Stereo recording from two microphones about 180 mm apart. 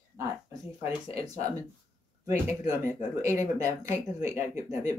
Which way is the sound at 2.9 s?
15° right (ahead or behind).